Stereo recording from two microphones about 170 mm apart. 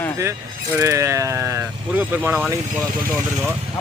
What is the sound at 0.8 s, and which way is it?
Speech, 15° right (ahead or behind).